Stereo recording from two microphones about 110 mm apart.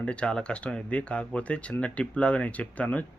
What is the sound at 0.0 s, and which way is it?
Speech, 10° left (ahead or behind).